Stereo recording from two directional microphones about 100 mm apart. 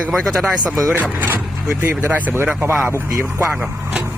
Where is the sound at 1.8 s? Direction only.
20° right (ahead or behind).